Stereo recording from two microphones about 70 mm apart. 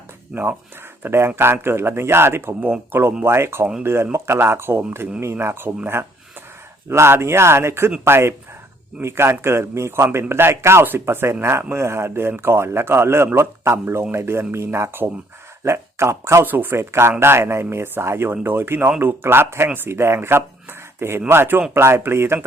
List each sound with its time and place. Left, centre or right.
0.3 s speech: centre
1.0 s speech: right
16.5 s speech: right